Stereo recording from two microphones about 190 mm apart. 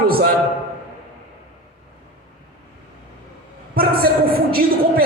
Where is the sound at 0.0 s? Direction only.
50° right (ahead or behind).